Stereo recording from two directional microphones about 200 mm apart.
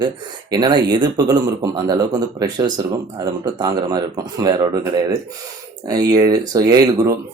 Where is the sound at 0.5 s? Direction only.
20° right (ahead or behind).